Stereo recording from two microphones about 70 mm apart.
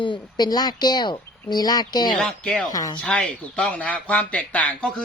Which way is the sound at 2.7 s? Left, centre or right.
Left.